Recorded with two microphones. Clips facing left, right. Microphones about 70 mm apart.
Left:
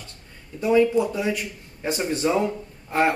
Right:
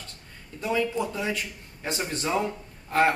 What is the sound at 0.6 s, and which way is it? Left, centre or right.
Speech, centre.